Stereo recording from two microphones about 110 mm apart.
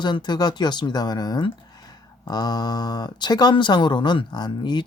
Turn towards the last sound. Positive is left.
turn(degrees=40)  # may be behind; listen again after turning